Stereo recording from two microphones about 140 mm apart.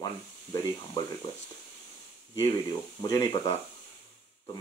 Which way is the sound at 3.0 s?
25° left (ahead or behind).